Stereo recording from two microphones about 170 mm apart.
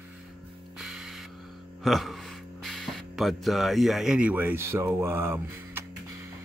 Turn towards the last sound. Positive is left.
turn(degrees=-15)  # may be behind; listen again after turning